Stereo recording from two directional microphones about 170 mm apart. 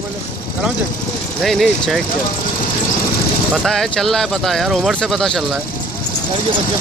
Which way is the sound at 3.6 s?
Centre (ahead or behind).